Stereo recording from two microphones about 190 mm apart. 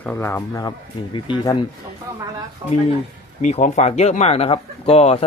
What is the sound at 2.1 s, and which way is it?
Speech, 15° right (ahead or behind).